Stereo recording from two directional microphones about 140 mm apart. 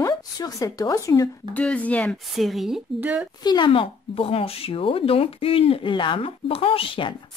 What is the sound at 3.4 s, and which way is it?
Speech, 35° left (ahead or behind).